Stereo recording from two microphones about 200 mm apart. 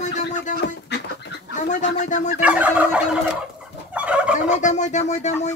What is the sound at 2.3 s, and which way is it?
Fowl, 5° right (ahead or behind).